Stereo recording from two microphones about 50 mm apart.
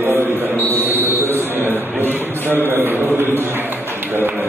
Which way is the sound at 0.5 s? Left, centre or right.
Left.